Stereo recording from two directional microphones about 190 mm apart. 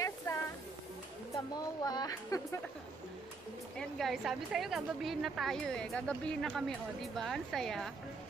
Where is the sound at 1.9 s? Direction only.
20° left (ahead or behind).